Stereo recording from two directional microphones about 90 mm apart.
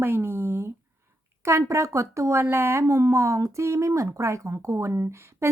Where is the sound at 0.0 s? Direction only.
25° right (ahead or behind).